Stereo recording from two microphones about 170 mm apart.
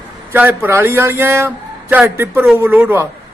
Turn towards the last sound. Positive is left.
turn(degrees=-10)  # may be behind; listen again after turning